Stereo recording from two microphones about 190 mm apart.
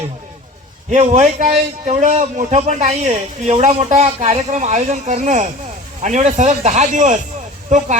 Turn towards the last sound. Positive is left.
turn(degrees=-40)  # may be behind; listen again after turning